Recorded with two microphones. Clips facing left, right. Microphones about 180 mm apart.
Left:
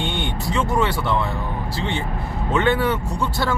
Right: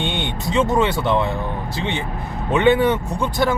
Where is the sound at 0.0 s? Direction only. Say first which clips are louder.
Right 1 dB; 20° right (ahead or behind).